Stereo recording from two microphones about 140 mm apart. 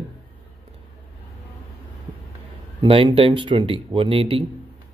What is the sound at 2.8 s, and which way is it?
Speech, 40° right (ahead or behind).